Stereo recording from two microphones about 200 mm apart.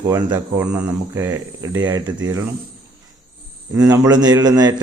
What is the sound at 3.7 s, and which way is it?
A man's voice, 20° right (ahead or behind).